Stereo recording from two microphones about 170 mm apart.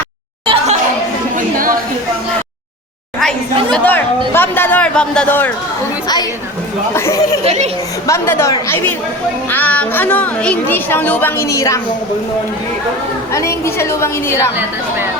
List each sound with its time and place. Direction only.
0.4 s a sound: 35° right (ahead or behind)
1.4 s a sound: 55° right (ahead or behind)
3.7 s speech: 10° left (ahead or behind)
6.9 s speech: 15° left (ahead or behind)
7.4 s speech: 40° right (ahead or behind)
8.0 s speech: 15° left (ahead or behind)
13.3 s speech: 15° left (ahead or behind)
14.5 s speech: 15° right (ahead or behind)